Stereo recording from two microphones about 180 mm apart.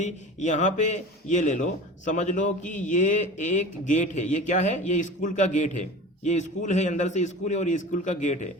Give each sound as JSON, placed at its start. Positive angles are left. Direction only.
{"t": 0.0, "sound": "a man's voice", "side_deg": 40}